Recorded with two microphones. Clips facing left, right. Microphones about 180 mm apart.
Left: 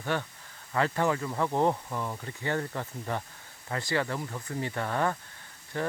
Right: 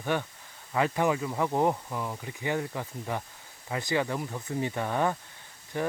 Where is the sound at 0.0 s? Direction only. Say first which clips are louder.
Right 2 dB; 10° right (ahead or behind).